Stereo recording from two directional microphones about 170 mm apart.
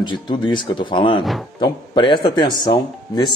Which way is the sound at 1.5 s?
25° left (ahead or behind).